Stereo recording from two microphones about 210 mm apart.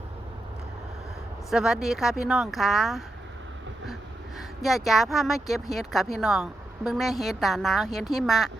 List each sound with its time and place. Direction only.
1.5 s speech: centre (ahead or behind)
4.4 s speech: centre (ahead or behind)